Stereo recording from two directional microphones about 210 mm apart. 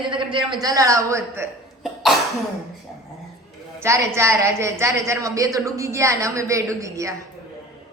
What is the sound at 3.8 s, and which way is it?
A woman's voice, 15° right (ahead or behind).